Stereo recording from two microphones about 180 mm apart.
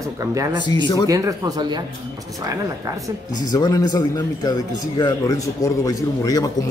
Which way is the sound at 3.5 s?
20° left (ahead or behind).